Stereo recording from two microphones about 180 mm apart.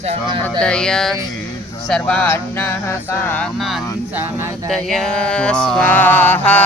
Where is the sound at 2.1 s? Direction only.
10° left (ahead or behind).